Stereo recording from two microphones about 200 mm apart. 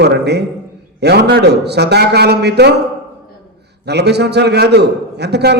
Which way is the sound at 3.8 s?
55° right (ahead or behind).